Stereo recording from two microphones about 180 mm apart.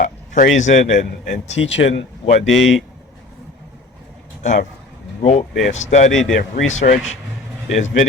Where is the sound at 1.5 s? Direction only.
90° left.